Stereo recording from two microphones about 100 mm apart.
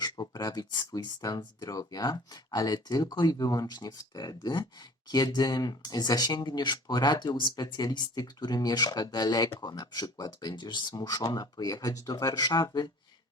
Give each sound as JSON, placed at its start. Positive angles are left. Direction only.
{"t": 0.0, "sound": "speech", "side_deg": 40}